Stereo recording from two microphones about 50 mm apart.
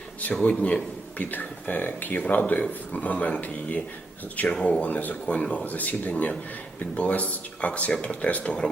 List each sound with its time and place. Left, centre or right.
0.4 s speech: left
1.2 s speech: left